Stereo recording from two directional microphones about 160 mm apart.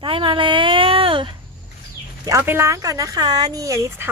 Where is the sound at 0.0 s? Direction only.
30° right (ahead or behind).